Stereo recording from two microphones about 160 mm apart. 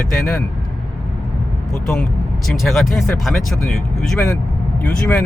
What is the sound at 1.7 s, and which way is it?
Speech, 5° left (ahead or behind).